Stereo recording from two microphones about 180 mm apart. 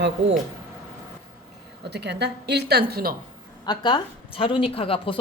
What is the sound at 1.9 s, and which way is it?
A woman's voice, 70° right (ahead or behind).